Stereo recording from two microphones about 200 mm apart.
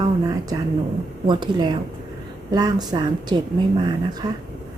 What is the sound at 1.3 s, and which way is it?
Speech, 20° right (ahead or behind).